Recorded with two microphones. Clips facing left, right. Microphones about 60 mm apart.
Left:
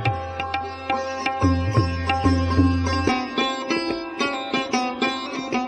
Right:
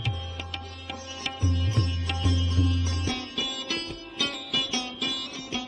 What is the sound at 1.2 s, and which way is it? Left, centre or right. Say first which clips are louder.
Sitar: left 6 dB; left.